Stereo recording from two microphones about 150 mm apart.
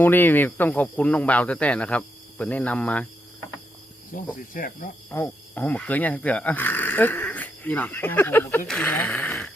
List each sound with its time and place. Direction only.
0.0 s speech: 15° left (ahead or behind)
4.4 s cricket: 65° left (ahead or behind)
5.1 s speech: 15° left (ahead or behind)